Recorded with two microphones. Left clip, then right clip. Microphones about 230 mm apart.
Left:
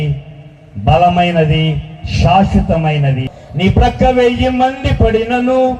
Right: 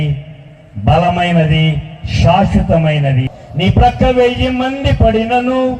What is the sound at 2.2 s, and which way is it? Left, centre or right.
A man's voice, left.